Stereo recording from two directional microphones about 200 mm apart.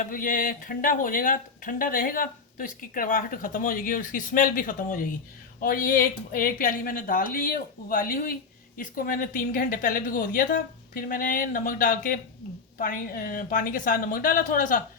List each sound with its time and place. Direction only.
0.0 s speech: 45° left (ahead or behind)